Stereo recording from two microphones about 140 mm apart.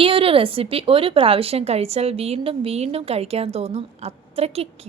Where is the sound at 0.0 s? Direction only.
40° right (ahead or behind).